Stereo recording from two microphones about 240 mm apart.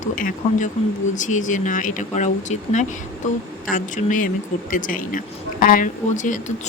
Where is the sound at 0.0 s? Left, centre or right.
Left.